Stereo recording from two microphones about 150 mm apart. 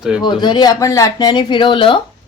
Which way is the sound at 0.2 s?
30° left (ahead or behind).